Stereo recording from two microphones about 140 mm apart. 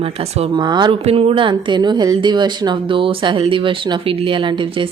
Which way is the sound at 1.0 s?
45° right (ahead or behind).